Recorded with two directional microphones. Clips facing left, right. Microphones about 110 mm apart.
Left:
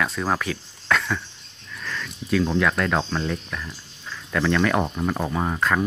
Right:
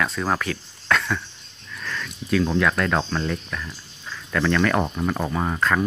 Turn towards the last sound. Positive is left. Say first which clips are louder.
# even
turn(degrees=5)  # may be behind; listen again after turning